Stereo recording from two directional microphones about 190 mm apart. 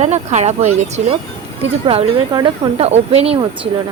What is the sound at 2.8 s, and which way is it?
Speech, 35° right (ahead or behind).